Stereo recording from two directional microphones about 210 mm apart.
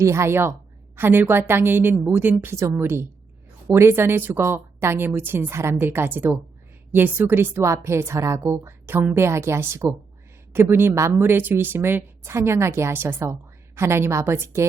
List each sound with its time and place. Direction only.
0.0 s a woman's voice: 15° right (ahead or behind)